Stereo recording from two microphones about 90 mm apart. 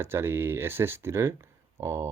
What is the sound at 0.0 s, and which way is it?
Speech, 25° right (ahead or behind).